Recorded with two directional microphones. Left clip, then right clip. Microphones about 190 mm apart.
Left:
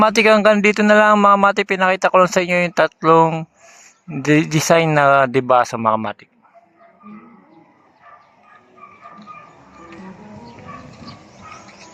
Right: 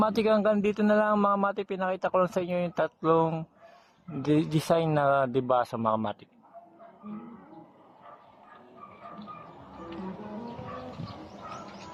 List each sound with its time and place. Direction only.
0.0 s speech: 15° left (ahead or behind)